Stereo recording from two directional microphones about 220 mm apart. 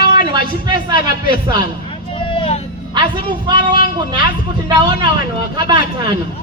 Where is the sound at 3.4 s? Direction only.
20° right (ahead or behind).